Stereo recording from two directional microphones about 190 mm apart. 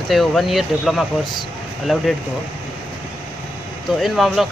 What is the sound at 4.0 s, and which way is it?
Speech, centre (ahead or behind).